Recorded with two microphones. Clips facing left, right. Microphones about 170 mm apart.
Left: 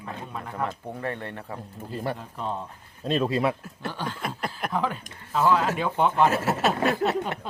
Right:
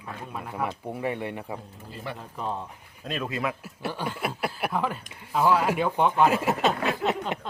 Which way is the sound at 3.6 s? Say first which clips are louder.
Right 1 dB; 10° right (ahead or behind).